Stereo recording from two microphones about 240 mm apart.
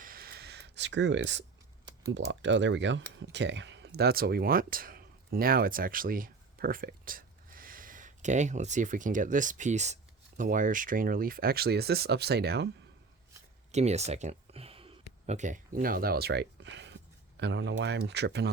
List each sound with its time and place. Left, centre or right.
0.0 s a sound: right
2.1 s speech: right
13.7 s speech: right